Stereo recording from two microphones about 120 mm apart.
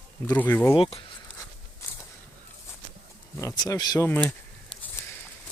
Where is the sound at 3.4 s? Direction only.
25° left (ahead or behind).